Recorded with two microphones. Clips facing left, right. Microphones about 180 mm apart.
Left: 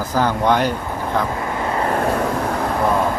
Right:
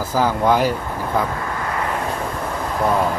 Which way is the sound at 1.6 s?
30° left (ahead or behind).